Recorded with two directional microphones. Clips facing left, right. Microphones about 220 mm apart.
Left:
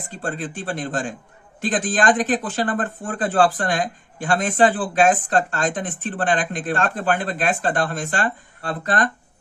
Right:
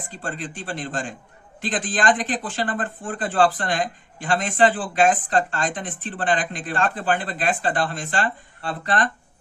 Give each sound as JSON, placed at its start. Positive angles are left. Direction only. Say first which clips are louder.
{"t": 0.1, "sound": "speech", "louder": "left 4 dB", "side_deg": 45}